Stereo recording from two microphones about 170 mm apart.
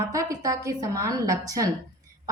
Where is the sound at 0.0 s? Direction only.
20° right (ahead or behind).